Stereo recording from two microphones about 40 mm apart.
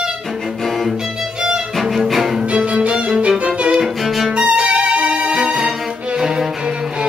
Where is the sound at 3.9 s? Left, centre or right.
Centre.